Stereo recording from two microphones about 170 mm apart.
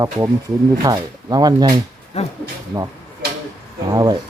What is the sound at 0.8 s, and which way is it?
Speech, 20° right (ahead or behind).